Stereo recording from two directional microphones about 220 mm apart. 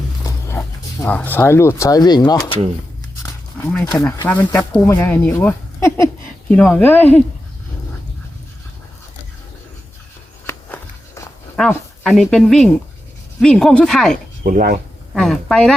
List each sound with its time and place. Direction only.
0.3 s a sound: 15° left (ahead or behind)
1.0 s speech: 10° left (ahead or behind)
3.9 s speech: 5° left (ahead or behind)
10.4 s walk: 10° left (ahead or behind)
11.5 s speech: centre (ahead or behind)
14.4 s speech: 40° right (ahead or behind)
15.1 s speech: centre (ahead or behind)